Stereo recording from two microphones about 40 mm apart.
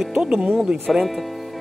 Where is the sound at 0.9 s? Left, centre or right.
Centre.